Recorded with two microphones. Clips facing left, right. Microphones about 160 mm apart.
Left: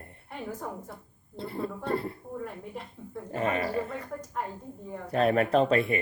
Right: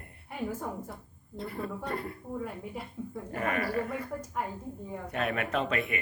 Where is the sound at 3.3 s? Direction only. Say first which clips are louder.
Left 2 dB; 25° left (ahead or behind).